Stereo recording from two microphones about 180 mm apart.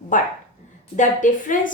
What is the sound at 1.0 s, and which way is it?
Speech, 45° left (ahead or behind).